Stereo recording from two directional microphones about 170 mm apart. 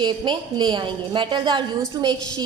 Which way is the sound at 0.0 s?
25° right (ahead or behind).